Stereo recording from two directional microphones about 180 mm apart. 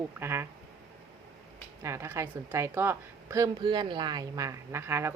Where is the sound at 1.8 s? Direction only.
15° right (ahead or behind).